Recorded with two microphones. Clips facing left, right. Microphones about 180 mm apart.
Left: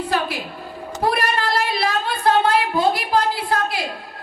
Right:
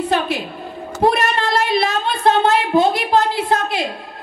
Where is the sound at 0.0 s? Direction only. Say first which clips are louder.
Right 4 dB; 25° right (ahead or behind).